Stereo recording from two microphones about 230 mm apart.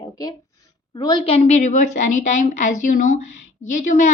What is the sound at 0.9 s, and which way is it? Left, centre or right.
A woman's voice, left.